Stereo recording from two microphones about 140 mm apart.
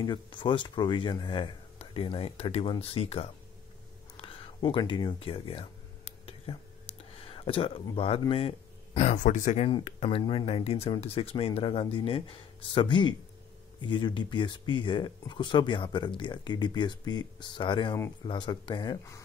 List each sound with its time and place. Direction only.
0.0 s speech: 35° left (ahead or behind)
4.2 s a sound: 45° left (ahead or behind)
7.2 s speech: 40° left (ahead or behind); by 9.7 s 60° left (ahead or behind)
9.8 s speech: 45° left (ahead or behind)